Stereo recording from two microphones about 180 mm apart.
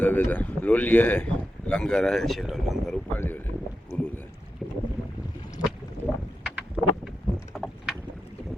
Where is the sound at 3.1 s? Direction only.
10° left (ahead or behind).